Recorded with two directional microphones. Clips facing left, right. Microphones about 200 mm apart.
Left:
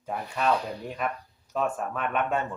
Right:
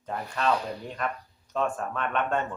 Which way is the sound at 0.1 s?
5° left (ahead or behind).